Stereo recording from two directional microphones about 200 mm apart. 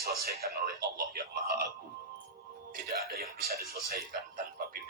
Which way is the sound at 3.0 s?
50° right (ahead or behind).